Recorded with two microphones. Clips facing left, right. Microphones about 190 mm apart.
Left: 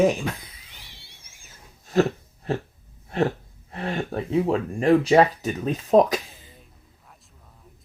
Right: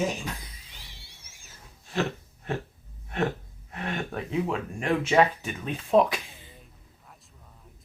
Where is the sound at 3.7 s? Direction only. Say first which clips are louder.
Left 5 dB; 30° left (ahead or behind).